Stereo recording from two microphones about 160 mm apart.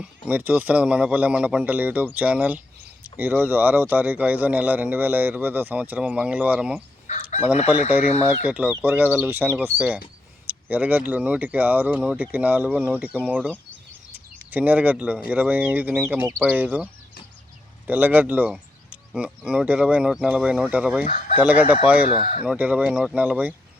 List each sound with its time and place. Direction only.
0.0 s a man's voice: 10° right (ahead or behind)
7.1 s chicken: 45° left (ahead or behind)
7.7 s a man's voice: 10° right (ahead or behind)
14.5 s a man's voice: 10° right (ahead or behind)
21.0 s speech: 55° left (ahead or behind)
21.3 s a man's voice: 10° right (ahead or behind)
22.0 s speech: 50° left (ahead or behind)
22.4 s a man's voice: 10° right (ahead or behind)